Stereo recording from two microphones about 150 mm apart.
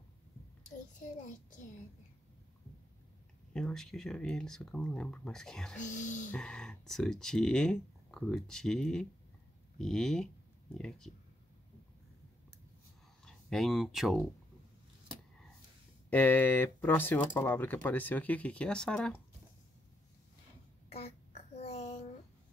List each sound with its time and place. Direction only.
3.5 s speech: 5° left (ahead or behind)
5.8 s speech: 55° left (ahead or behind)
6.3 s speech: 5° left (ahead or behind)
13.2 s speech: centre (ahead or behind)
16.1 s speech: 10° left (ahead or behind)
20.9 s child singing: 45° left (ahead or behind)